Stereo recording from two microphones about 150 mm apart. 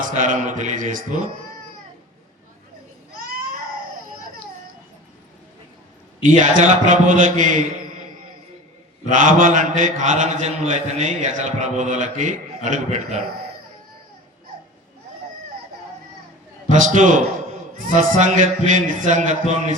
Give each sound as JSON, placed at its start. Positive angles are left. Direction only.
{"t": 0.0, "sound": "mantra", "side_deg": -60}
{"t": 6.4, "sound": "mantra", "side_deg": -60}
{"t": 9.0, "sound": "mantra", "side_deg": -60}
{"t": 16.6, "sound": "mantra", "side_deg": -60}